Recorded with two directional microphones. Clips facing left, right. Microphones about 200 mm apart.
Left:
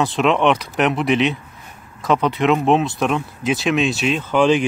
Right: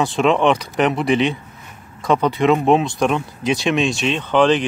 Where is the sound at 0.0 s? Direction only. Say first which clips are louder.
Right 1 dB; centre (ahead or behind).